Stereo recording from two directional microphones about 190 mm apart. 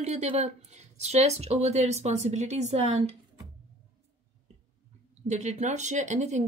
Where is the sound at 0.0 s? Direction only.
35° right (ahead or behind).